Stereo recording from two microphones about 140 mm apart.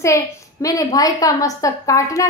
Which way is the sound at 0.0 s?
25° left (ahead or behind).